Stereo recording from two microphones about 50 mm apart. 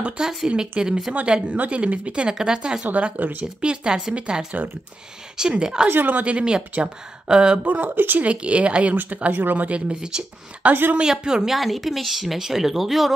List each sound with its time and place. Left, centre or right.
0.2 s speech: centre
2.9 s speech: right
5.4 s speech: centre
5.9 s speech: right
6.2 s speech: right
7.6 s speech: right
8.2 s speech: right
9.7 s speech: right
10.7 s speech: right
11.0 s speech: centre
11.5 s a woman's voice: centre